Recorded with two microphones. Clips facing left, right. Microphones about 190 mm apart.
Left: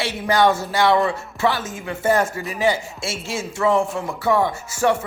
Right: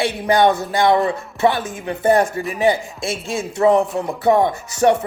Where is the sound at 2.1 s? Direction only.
35° right (ahead or behind).